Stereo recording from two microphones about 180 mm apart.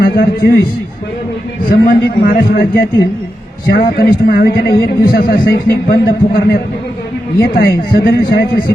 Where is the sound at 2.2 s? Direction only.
55° left (ahead or behind).